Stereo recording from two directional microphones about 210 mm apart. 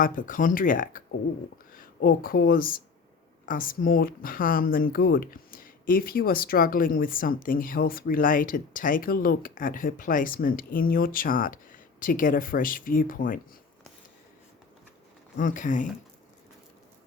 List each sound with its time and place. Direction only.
0.0 s speech: 40° left (ahead or behind)
15.4 s speech: 40° left (ahead or behind)